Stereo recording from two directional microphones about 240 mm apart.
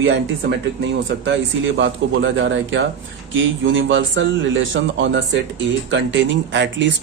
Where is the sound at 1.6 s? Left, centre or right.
Right.